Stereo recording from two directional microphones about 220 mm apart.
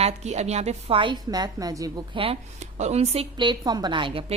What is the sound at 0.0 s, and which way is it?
A woman's voice, 30° right (ahead or behind).